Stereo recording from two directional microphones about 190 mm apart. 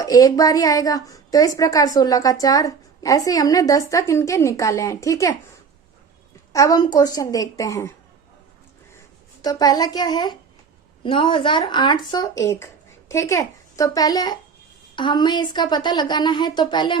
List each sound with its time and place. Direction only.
0.0 s a woman's voice: 20° left (ahead or behind)
6.5 s a woman's voice: 20° left (ahead or behind)
9.4 s speech: 20° left (ahead or behind)